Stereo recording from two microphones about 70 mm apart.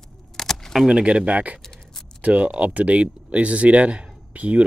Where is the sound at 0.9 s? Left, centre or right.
Centre.